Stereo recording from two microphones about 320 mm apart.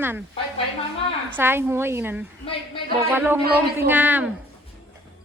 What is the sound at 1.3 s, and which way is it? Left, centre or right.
A woman's voice, centre.